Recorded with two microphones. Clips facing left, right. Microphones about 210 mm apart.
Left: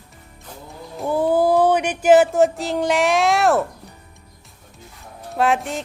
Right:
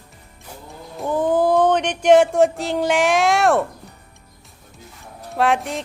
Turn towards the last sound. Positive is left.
turn(degrees=0)  # may be behind; listen again after turning